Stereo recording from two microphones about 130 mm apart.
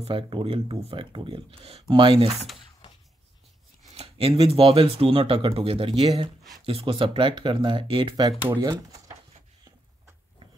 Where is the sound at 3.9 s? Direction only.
50° right (ahead or behind).